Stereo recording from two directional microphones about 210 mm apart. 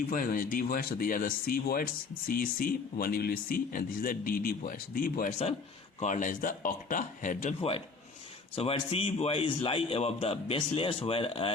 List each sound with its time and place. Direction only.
0.1 s a man's voice: 45° left (ahead or behind); by 11.5 s 25° left (ahead or behind)